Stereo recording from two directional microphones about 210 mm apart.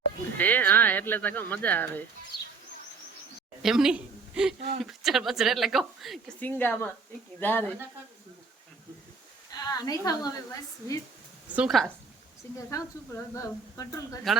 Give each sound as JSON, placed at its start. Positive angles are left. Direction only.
{"t": 0.3, "sound": "speech", "side_deg": 10}
{"t": 3.6, "sound": "a woman's voice", "side_deg": 0}
{"t": 9.5, "sound": "speech", "side_deg": 20}
{"t": 11.5, "sound": "speech", "side_deg": 0}
{"t": 12.7, "sound": "speech", "side_deg": 15}